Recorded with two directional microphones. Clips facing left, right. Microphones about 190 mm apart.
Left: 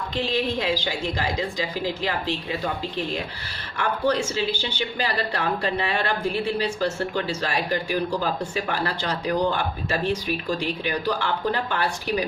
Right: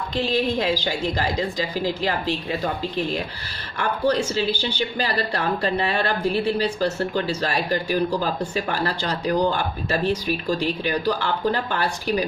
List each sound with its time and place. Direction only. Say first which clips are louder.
0.2 s speech: right 3 dB; 45° right (ahead or behind)
3.8 s speech: right 2 dB; 40° right (ahead or behind)